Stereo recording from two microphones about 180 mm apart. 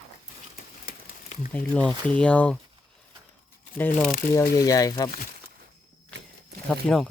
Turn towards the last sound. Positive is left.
turn(degrees=5)  # may be behind; listen again after turning